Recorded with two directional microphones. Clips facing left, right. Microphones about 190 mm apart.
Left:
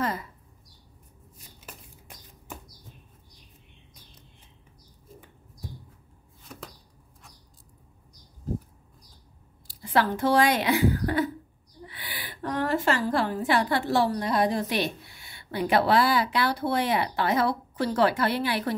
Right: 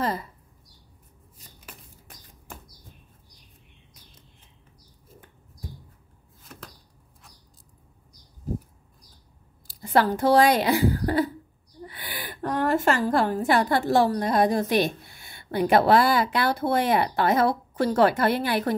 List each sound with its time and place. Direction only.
0.0 s a sound: 30° right (ahead or behind)
6.4 s chopping: centre (ahead or behind)
9.8 s speech: 40° right (ahead or behind)
11.8 s a woman's voice: 45° right (ahead or behind)